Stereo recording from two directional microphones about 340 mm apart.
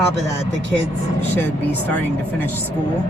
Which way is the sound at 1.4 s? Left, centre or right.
Centre.